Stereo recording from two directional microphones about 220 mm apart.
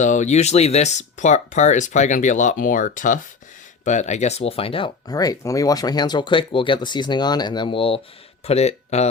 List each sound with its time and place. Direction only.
0.0 s speech: 35° left (ahead or behind)